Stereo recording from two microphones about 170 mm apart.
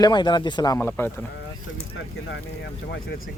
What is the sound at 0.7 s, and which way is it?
Speech, 10° left (ahead or behind).